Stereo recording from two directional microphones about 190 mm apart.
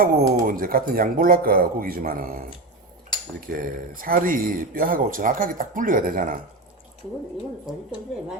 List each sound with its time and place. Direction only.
0.0 s speech: 50° right (ahead or behind)
3.4 s speech: 50° right (ahead or behind)